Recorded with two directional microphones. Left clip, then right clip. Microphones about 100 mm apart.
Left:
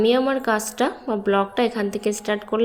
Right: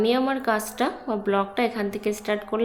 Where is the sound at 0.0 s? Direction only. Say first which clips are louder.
Left 4 dB; 30° left (ahead or behind).